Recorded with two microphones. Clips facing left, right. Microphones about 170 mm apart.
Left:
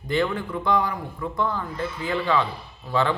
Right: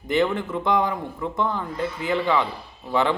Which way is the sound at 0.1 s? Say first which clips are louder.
Right 2 dB; 20° right (ahead or behind).